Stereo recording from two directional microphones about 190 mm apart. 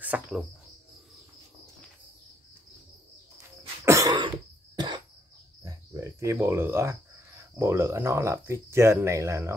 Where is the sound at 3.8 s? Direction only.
15° right (ahead or behind).